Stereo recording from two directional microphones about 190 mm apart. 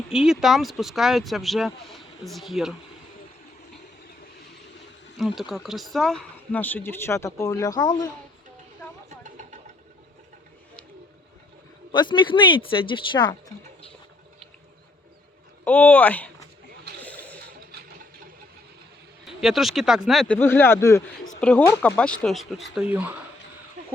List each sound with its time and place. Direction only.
0.1 s speech: 5° right (ahead or behind)
5.1 s speech: centre (ahead or behind); by 8.1 s 20° left (ahead or behind)
9.2 s vehicle: 40° right (ahead or behind)
11.9 s speech: 25° left (ahead or behind)
15.6 s speech: 10° left (ahead or behind)
17.0 s a sound: 10° left (ahead or behind)
19.4 s speech: centre (ahead or behind)